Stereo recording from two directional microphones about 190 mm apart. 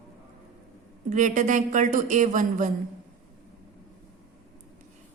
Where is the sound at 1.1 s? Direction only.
40° right (ahead or behind).